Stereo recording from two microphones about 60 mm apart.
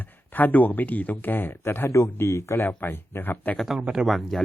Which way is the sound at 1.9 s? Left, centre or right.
Left.